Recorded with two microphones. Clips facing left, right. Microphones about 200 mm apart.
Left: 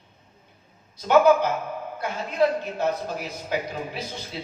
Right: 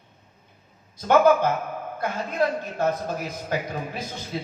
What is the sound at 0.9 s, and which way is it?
Speech, 50° right (ahead or behind).